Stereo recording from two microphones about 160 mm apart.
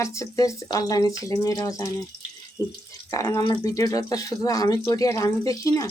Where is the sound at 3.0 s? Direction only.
20° left (ahead or behind).